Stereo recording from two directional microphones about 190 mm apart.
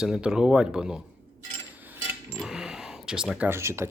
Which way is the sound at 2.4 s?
5° right (ahead or behind).